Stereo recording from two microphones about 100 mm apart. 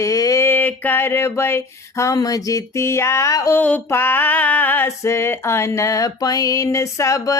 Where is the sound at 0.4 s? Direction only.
20° left (ahead or behind).